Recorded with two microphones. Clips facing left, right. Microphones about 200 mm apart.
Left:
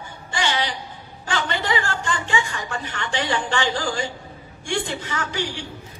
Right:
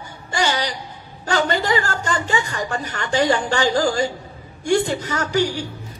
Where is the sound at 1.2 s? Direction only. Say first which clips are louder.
Right 6 dB; 40° right (ahead or behind).